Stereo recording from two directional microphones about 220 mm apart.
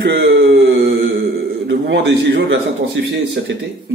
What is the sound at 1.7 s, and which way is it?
Speech, 55° right (ahead or behind).